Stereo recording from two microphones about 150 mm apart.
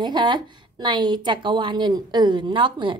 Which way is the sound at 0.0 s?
30° right (ahead or behind).